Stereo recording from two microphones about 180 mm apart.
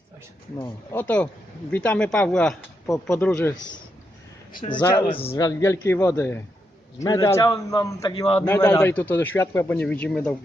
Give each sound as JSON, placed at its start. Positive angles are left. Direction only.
{"t": 0.6, "sound": "speech", "side_deg": 15}
{"t": 4.8, "sound": "a man's voice", "side_deg": 25}
{"t": 5.4, "sound": "a man's voice", "side_deg": 20}
{"t": 8.1, "sound": "a man's voice", "side_deg": 30}
{"t": 8.4, "sound": "speech", "side_deg": 15}